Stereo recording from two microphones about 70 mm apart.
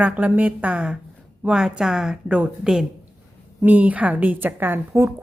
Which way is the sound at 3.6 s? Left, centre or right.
Right.